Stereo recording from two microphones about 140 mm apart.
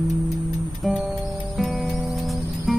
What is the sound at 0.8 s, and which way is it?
Music, centre (ahead or behind).